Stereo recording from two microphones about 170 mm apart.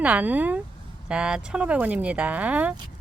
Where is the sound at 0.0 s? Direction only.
10° right (ahead or behind).